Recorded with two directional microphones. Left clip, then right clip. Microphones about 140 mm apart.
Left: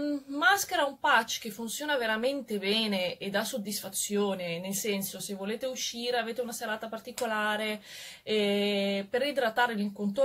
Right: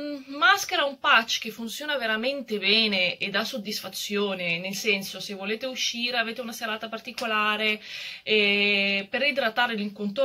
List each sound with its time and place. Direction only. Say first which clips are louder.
0.4 s a woman's voice: right 4 dB; 45° left (ahead or behind)